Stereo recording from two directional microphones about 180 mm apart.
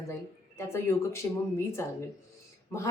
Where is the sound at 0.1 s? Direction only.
15° left (ahead or behind).